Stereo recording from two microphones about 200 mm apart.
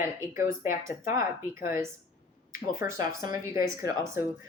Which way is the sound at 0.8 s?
15° right (ahead or behind).